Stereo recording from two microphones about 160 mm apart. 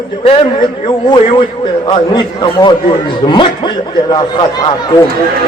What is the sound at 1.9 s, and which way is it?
A man's voice, 30° left (ahead or behind).